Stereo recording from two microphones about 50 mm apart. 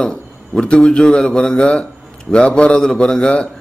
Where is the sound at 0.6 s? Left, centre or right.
Centre.